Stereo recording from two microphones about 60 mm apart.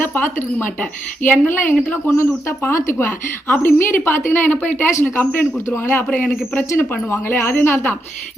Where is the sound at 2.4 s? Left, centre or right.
Left.